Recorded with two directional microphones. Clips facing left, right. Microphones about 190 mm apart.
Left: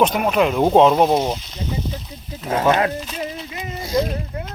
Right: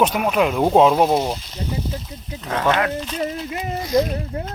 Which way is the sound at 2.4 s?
25° left (ahead or behind).